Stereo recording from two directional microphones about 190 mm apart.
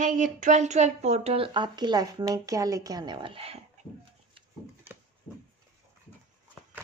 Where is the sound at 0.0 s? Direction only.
45° right (ahead or behind).